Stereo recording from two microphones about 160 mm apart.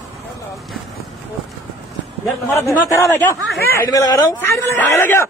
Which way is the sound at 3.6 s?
15° left (ahead or behind).